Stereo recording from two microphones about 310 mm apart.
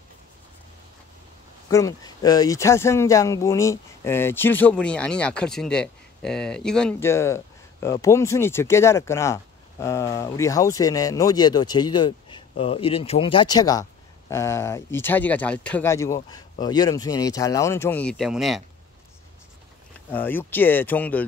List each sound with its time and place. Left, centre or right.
1.7 s speech: centre
20.1 s speech: centre